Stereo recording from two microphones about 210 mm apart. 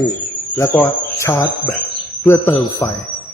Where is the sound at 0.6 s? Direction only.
10° left (ahead or behind).